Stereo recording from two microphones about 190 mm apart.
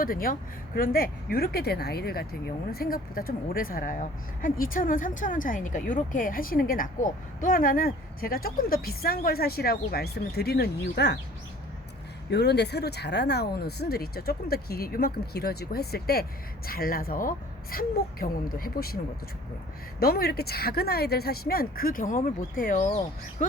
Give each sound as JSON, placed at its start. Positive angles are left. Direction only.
{"t": 0.0, "sound": "speech", "side_deg": 50}
{"t": 12.3, "sound": "speech", "side_deg": 60}
{"t": 20.0, "sound": "speech", "side_deg": 55}